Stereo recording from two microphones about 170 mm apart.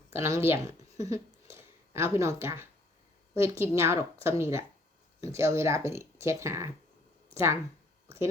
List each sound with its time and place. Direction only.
0.1 s speech: 15° right (ahead or behind)